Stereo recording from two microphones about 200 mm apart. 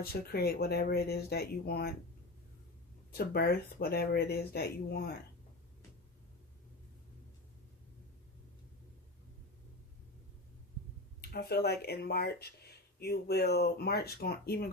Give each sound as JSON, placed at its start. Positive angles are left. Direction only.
{"t": 0.0, "sound": "speech", "side_deg": 50}
{"t": 3.1, "sound": "speech", "side_deg": 50}
{"t": 11.2, "sound": "speech", "side_deg": 50}